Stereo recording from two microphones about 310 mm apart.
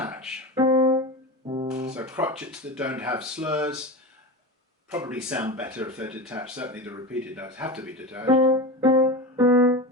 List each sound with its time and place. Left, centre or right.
0.0 s music: centre
1.9 s speech: centre
4.9 s speech: centre
8.4 s music: centre
8.8 s music: centre